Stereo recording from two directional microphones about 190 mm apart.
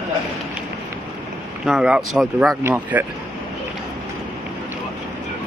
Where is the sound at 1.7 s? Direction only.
5° right (ahead or behind).